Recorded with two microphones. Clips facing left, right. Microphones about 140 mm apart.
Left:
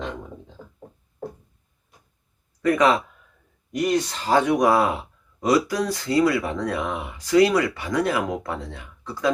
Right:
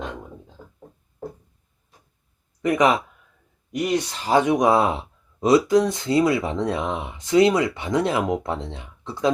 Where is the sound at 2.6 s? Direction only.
20° right (ahead or behind).